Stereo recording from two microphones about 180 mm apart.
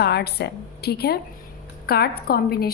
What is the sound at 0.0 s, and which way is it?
Speech, 65° left (ahead or behind).